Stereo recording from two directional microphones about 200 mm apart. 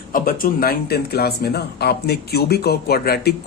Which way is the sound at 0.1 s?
45° left (ahead or behind).